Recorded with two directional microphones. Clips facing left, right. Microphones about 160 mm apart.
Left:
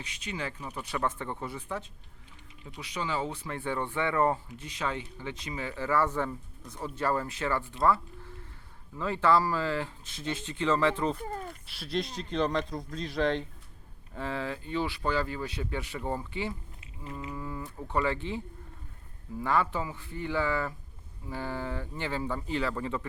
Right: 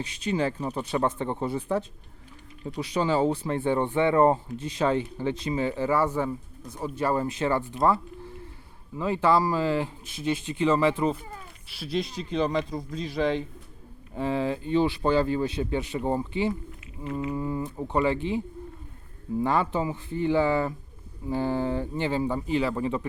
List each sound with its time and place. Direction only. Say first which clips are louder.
0.0 s speech: right 10 dB; 30° right (ahead or behind); by 11.2 s 10° right (ahead or behind)
11.2 s a sound: left 6 dB; 45° left (ahead or behind)
11.7 s speech: right 4 dB; centre (ahead or behind)
14.1 s speech: right 7 dB; 20° right (ahead or behind)